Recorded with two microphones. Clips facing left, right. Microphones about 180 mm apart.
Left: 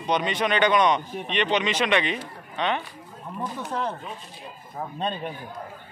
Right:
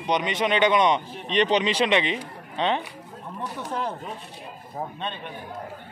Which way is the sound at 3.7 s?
5° right (ahead or behind).